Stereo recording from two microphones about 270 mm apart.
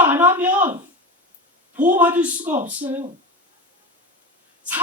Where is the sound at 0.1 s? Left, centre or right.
Centre.